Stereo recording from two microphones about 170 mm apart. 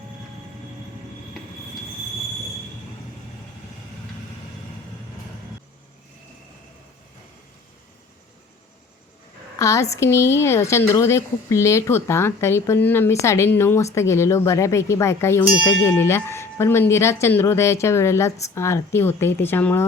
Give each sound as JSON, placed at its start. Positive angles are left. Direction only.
{"t": 9.6, "sound": "speech", "side_deg": 20}